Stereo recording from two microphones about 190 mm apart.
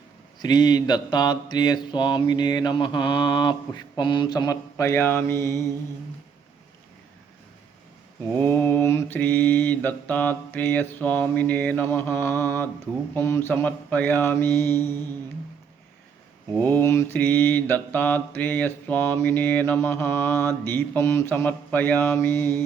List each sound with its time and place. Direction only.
0.4 s mantra: 20° left (ahead or behind)
8.4 s mantra: 10° left (ahead or behind)
16.6 s mantra: 10° left (ahead or behind)